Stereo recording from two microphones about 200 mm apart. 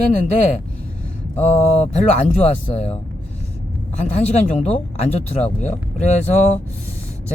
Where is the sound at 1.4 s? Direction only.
35° left (ahead or behind).